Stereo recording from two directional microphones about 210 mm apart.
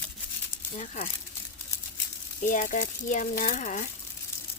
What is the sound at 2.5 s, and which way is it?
Speech, 40° left (ahead or behind).